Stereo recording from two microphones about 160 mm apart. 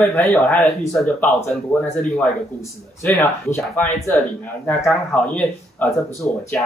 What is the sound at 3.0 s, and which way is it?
Speech, 15° left (ahead or behind).